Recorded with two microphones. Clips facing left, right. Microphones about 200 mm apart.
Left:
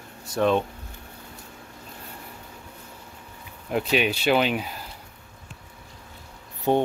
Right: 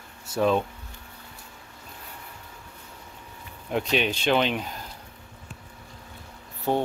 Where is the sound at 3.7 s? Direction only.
5° left (ahead or behind).